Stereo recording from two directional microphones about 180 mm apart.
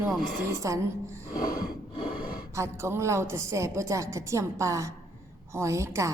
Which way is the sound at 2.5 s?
15° right (ahead or behind).